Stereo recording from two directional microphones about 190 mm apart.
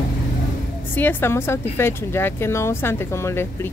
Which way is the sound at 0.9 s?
10° left (ahead or behind).